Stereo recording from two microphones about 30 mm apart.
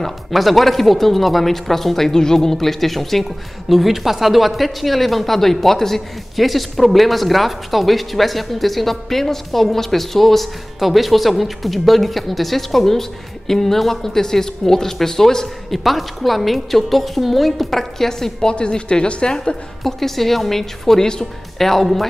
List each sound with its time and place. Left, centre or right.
0.0 s speech: centre
2.1 s speech: centre
6.3 s speech: centre
15.7 s speech: centre
18.4 s speech: left
19.8 s speech: centre
21.0 s speech: left
21.5 s speech: centre